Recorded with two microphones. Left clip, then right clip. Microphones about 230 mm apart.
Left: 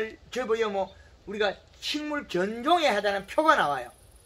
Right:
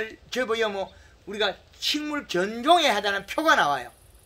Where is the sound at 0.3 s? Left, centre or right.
Right.